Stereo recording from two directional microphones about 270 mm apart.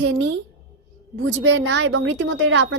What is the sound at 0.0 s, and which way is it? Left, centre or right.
A woman's voice, right.